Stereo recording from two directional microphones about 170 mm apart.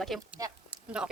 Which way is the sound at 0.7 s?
5° right (ahead or behind).